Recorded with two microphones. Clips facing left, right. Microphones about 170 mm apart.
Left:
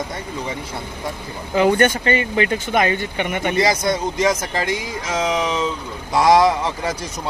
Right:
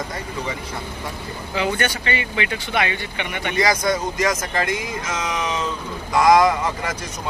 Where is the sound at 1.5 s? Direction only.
45° left (ahead or behind).